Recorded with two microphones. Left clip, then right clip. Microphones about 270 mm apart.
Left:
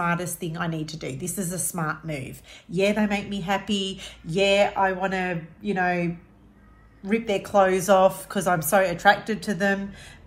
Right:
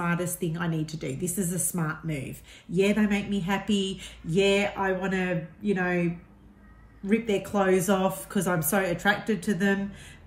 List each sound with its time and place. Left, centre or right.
0.0 s speech: centre
7.1 s speech: centre